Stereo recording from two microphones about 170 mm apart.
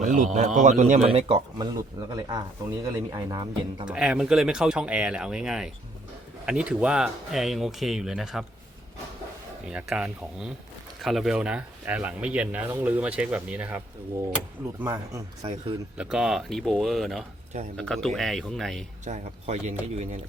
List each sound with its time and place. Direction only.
0.0 s a man's voice: 50° right (ahead or behind)
1.0 s speech: 30° right (ahead or behind)
3.8 s speech: 5° right (ahead or behind)
9.6 s speech: 5° right (ahead or behind)
14.8 s speech: 20° right (ahead or behind)
16.0 s speech: centre (ahead or behind)
19.0 s a man's voice: 45° right (ahead or behind)